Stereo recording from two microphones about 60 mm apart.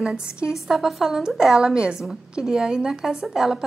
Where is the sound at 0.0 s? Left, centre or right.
Centre.